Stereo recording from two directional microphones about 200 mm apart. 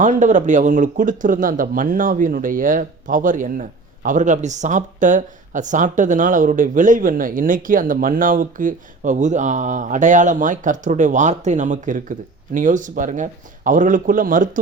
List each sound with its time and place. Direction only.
0.0 s speech: 40° right (ahead or behind)